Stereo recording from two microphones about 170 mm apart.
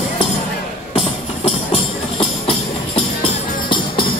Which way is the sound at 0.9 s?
30° left (ahead or behind).